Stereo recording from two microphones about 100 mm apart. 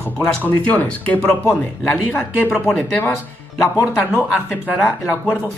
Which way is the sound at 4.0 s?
20° left (ahead or behind).